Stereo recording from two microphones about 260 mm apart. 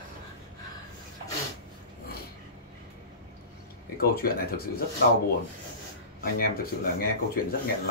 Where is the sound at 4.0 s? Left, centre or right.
Left.